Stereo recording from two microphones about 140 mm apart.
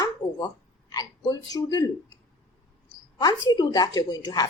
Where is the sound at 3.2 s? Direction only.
30° left (ahead or behind).